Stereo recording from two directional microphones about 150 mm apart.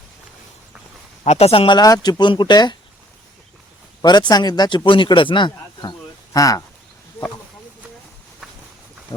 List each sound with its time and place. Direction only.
1.2 s speech: 45° left (ahead or behind); by 2.7 s 30° left (ahead or behind)
4.0 s speech: 30° left (ahead or behind)